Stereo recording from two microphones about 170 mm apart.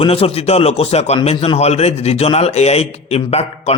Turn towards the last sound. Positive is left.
turn(degrees=35)  # may be behind; listen again after turning